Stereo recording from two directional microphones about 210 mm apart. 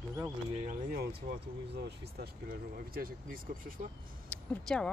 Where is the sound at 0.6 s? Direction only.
40° right (ahead or behind).